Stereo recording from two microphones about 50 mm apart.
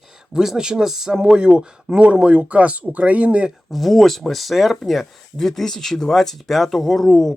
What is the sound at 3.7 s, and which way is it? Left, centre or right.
Speech, centre.